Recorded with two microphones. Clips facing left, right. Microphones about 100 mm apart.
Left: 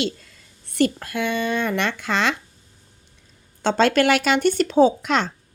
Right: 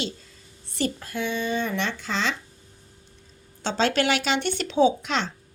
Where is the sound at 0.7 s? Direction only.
55° left (ahead or behind).